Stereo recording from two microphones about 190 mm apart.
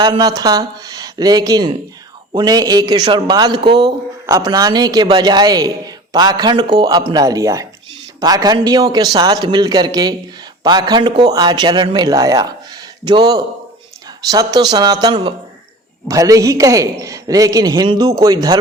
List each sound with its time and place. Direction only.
0.0 s a man's voice: 20° right (ahead or behind)